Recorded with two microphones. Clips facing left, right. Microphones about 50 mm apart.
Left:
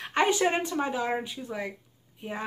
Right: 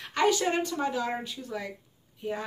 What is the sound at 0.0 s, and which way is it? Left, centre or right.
Speech, left.